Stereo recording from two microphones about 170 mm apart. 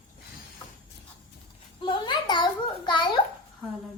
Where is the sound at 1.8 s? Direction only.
30° left (ahead or behind).